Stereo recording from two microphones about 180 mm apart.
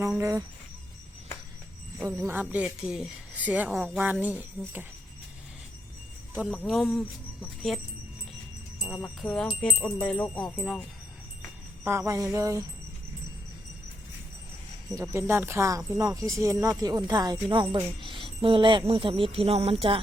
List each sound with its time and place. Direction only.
0.2 s speech: 15° right (ahead or behind)
2.0 s speech: 15° right (ahead or behind)
6.3 s speech: 5° right (ahead or behind)
9.0 s speech: 5° left (ahead or behind)
10.5 s wind chime: 10° left (ahead or behind)
11.8 s speech: 15° right (ahead or behind)
14.8 s speech: 20° right (ahead or behind)